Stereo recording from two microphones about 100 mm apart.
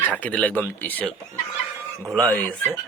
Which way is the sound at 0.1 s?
15° left (ahead or behind).